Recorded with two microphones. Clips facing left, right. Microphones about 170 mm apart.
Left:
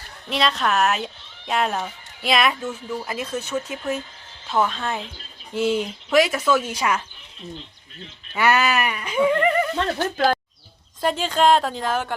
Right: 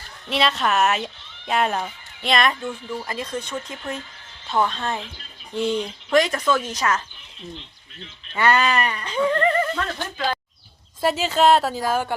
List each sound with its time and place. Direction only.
0.3 s speech: centre (ahead or behind)
8.3 s speech: 10° left (ahead or behind)
9.7 s speech: 35° left (ahead or behind)
11.0 s speech: 5° right (ahead or behind)